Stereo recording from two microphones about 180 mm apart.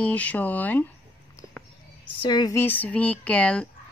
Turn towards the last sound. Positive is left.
turn(degrees=5)  # may be behind; listen again after turning